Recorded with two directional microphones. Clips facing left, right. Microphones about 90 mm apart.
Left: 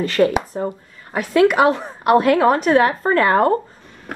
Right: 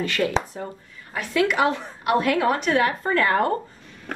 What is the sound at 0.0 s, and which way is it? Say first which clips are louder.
A woman's voice: left 6 dB; 35° left (ahead or behind).